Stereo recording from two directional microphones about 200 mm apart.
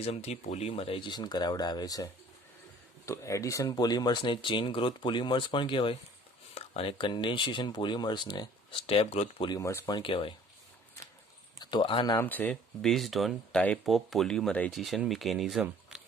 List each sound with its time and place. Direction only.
0.0 s speech: 30° left (ahead or behind)
3.1 s speech: 15° left (ahead or behind); by 9.5 s 30° left (ahead or behind)
9.5 s speech: 15° left (ahead or behind)
10.0 s speech: 25° left (ahead or behind)
11.6 s speech: 25° left (ahead or behind)
12.2 s speech: 10° left (ahead or behind)